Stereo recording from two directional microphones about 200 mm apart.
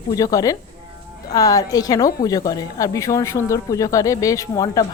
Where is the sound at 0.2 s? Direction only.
15° left (ahead or behind).